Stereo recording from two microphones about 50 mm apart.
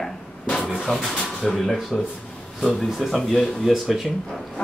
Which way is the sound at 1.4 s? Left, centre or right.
Centre.